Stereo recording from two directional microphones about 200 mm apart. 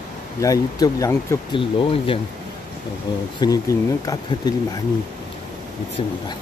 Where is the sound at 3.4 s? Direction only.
20° left (ahead or behind).